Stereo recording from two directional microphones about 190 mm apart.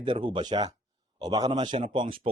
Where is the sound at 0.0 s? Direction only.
25° right (ahead or behind).